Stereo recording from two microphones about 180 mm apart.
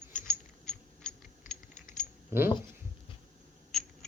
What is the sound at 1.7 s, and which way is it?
Coin, 45° left (ahead or behind).